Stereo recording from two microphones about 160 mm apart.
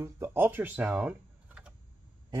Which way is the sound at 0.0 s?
15° right (ahead or behind).